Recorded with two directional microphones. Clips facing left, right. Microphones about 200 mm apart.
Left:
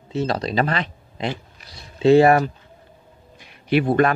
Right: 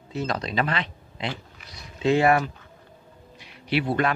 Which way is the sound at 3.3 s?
50° left (ahead or behind).